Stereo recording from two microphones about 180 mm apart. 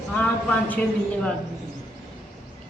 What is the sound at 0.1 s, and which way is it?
Speech, 10° left (ahead or behind).